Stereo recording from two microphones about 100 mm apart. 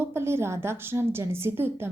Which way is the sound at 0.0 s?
25° right (ahead or behind).